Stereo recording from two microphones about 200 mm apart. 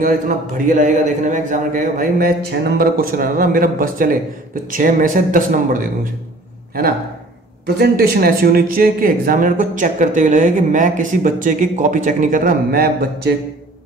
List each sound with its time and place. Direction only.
0.0 s speech: 40° right (ahead or behind)
7.6 s speech: 50° right (ahead or behind)